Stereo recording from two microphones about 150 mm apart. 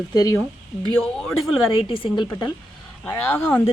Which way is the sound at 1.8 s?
35° left (ahead or behind).